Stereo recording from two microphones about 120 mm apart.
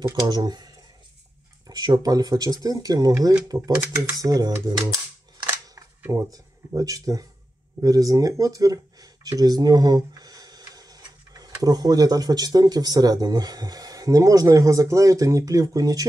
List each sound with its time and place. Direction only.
0.1 s speech: 30° right (ahead or behind)
1.7 s speech: 35° right (ahead or behind)
6.3 s speech: 30° right (ahead or behind)